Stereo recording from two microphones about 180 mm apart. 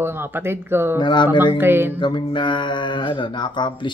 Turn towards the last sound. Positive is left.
turn(degrees=25)  # may be behind; listen again after turning